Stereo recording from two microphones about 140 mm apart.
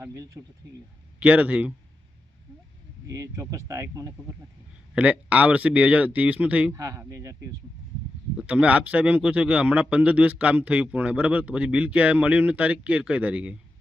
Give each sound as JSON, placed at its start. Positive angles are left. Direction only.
{"t": 0.0, "sound": "speech", "side_deg": -25}
{"t": 1.2, "sound": "a man's voice", "side_deg": -10}
{"t": 3.1, "sound": "speech", "side_deg": -20}
{"t": 4.9, "sound": "a man's voice", "side_deg": -10}
{"t": 6.7, "sound": "speech", "side_deg": -20}
{"t": 8.4, "sound": "a man's voice", "side_deg": -10}